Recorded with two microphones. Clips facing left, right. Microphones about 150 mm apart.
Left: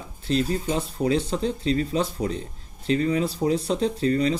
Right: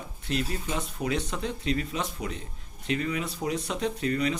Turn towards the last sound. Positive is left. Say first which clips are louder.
# left 5 dB
turn(degrees=30)  # may be behind; listen again after turning